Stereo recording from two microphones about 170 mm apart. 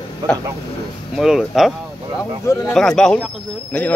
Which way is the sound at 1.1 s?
Centre (ahead or behind).